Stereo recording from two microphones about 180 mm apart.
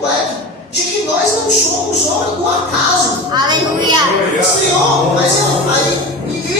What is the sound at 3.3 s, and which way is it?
Speech, 25° right (ahead or behind).